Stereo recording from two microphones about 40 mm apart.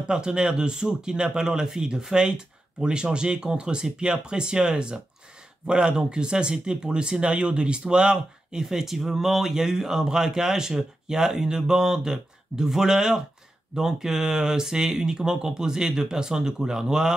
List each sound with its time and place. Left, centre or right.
0.1 s speech: right